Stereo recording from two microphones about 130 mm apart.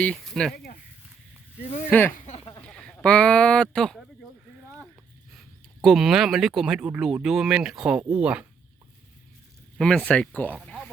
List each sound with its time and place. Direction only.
0.0 s speech: 5° left (ahead or behind)
1.9 s speech: 15° left (ahead or behind)
2.1 s a sound: 65° left (ahead or behind)
2.6 s a sound: 5° left (ahead or behind)
5.8 s speech: centre (ahead or behind)
9.7 s speech: 5° left (ahead or behind)